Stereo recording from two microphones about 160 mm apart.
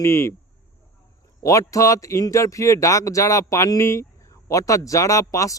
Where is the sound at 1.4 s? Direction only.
20° left (ahead or behind).